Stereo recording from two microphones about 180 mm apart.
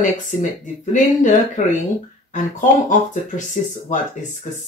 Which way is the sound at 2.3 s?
45° left (ahead or behind).